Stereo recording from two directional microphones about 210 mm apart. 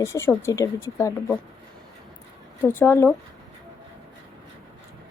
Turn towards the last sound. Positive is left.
turn(degrees=10)  # may be behind; listen again after turning